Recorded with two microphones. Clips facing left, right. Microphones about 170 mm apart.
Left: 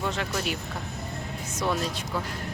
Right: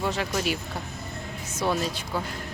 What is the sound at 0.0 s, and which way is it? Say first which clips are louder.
Speech: right 2 dB; 5° right (ahead or behind).